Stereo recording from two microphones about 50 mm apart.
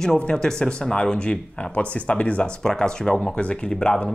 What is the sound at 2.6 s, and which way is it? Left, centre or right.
Speech, centre.